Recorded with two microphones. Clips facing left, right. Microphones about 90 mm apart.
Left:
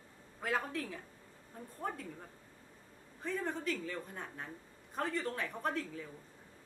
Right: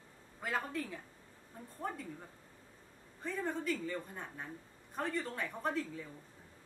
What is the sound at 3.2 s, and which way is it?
Speech, centre (ahead or behind).